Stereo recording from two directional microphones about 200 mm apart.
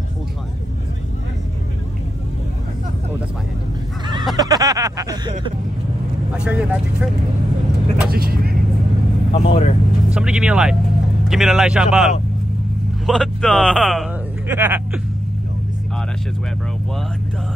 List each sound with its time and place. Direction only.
4.4 s a sound: 20° right (ahead or behind)
6.3 s a man's voice: 5° right (ahead or behind)
8.1 s speech: 50° right (ahead or behind)
9.3 s speech: 30° left (ahead or behind)
10.0 s a man's voice: 5° right (ahead or behind)
14.5 s speech: 10° right (ahead or behind)